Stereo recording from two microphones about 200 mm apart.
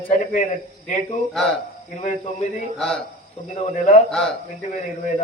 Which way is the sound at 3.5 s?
35° left (ahead or behind).